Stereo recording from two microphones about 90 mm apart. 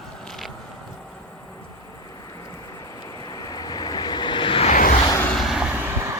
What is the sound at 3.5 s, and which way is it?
Vehicle, 50° left (ahead or behind).